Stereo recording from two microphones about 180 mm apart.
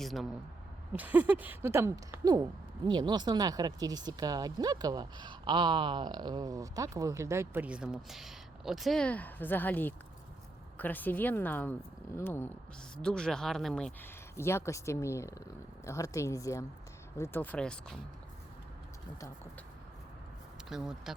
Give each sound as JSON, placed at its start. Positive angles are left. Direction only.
{"t": 0.0, "sound": "speech", "side_deg": 0}
{"t": 14.3, "sound": "speech", "side_deg": 15}
{"t": 20.7, "sound": "speech", "side_deg": 0}